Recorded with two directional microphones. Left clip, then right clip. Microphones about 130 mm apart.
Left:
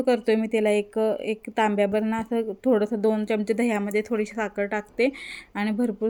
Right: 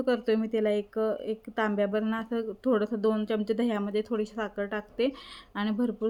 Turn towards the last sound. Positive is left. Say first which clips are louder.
# left 4 dB
turn(degrees=20)  # may be behind; listen again after turning